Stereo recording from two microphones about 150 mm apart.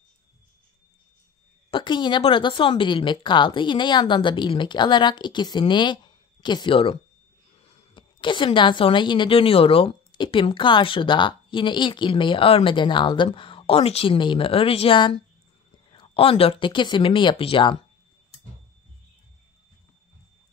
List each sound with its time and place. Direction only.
1.7 s a woman's voice: 30° left (ahead or behind)